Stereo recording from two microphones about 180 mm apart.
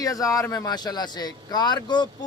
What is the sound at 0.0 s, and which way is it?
Speech, 20° left (ahead or behind).